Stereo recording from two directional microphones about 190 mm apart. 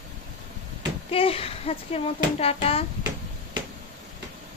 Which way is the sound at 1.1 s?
30° left (ahead or behind).